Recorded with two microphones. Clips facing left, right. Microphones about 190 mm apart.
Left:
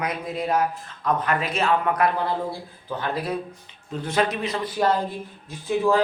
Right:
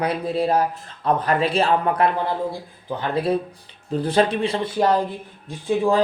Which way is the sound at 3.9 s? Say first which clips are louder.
Right 5 dB; 30° right (ahead or behind).